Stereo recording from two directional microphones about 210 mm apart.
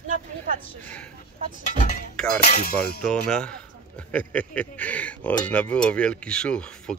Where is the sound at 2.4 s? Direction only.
45° left (ahead or behind).